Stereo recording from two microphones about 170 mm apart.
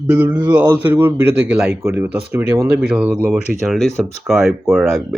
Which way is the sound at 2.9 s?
5° right (ahead or behind).